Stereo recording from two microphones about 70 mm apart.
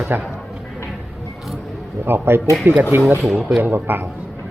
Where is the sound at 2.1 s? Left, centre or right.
Right.